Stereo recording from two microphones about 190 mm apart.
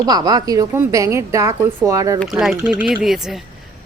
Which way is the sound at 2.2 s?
Centre (ahead or behind).